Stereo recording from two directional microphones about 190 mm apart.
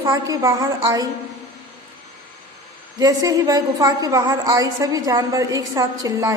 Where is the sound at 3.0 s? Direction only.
20° right (ahead or behind).